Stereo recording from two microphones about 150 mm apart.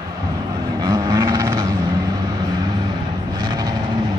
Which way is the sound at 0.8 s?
25° right (ahead or behind).